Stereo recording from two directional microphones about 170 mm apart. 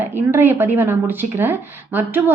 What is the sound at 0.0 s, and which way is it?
Speech, 10° right (ahead or behind).